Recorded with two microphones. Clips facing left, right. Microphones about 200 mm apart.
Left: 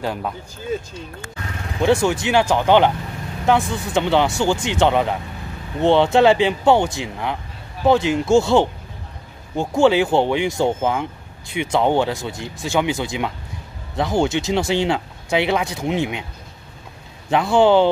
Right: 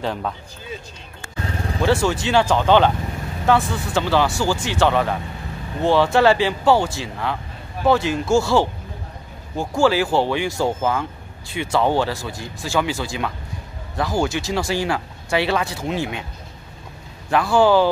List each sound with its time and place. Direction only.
0.0 s speech: 5° left (ahead or behind)
1.8 s speech: 15° left (ahead or behind)
17.3 s speech: 20° left (ahead or behind)